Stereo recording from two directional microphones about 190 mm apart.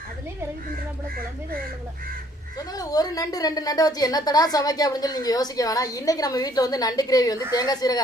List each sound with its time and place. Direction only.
2.7 s a woman's voice: 20° left (ahead or behind)